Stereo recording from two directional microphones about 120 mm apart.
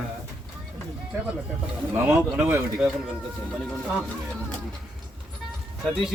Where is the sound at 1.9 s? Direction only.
15° right (ahead or behind).